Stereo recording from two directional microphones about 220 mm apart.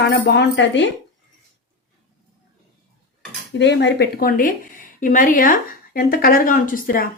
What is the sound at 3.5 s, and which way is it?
Speech, 55° left (ahead or behind).